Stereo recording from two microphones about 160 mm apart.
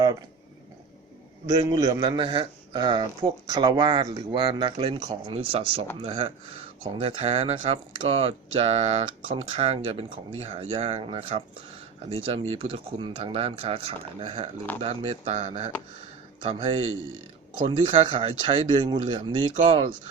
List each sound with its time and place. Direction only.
1.5 s a man's voice: 25° right (ahead or behind); by 15.7 s 45° right (ahead or behind)
16.4 s speech: 35° right (ahead or behind)